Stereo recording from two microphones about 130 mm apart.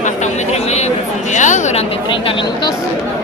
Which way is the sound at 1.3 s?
70° left (ahead or behind).